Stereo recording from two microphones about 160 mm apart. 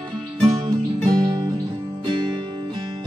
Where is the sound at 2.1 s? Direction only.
30° right (ahead or behind).